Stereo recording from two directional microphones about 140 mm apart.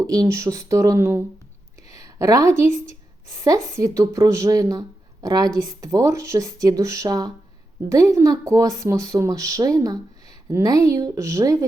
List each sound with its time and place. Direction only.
0.0 s speech: 25° right (ahead or behind)